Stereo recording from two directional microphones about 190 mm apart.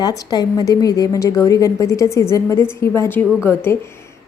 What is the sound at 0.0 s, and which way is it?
A woman's voice, 20° left (ahead or behind).